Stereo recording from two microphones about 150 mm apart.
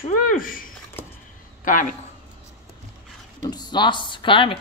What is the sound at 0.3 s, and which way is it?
A man's voice, 65° left (ahead or behind).